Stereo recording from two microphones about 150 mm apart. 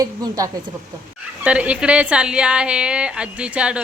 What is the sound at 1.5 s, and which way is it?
A woman's voice, 10° right (ahead or behind).